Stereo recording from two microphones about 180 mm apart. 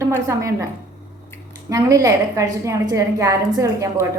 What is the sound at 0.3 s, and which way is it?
Speech, 15° right (ahead or behind).